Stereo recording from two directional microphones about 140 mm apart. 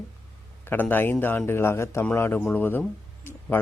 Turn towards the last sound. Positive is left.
turn(degrees=15)  # may be behind; listen again after turning